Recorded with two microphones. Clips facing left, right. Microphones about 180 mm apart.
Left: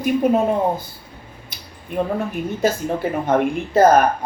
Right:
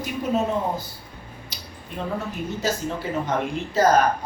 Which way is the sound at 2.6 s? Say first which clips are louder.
Left 7 dB; 55° left (ahead or behind).